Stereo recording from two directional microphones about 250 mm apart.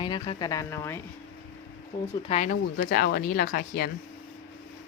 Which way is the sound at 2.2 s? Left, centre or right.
Left.